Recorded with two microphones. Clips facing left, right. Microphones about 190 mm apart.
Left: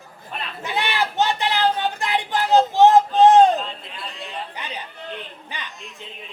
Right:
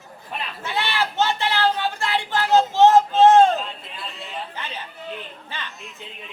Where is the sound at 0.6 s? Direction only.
15° left (ahead or behind).